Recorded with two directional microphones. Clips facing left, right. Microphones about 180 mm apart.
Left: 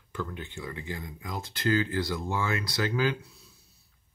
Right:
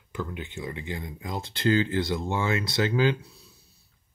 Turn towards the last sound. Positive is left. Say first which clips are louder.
# right 4 dB
turn(degrees=-25)  # may be behind; listen again after turning